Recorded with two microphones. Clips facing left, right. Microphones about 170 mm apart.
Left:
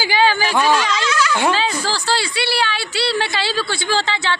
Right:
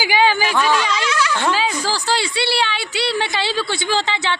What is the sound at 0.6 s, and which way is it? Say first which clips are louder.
Speech: left 3 dB; 15° left (ahead or behind).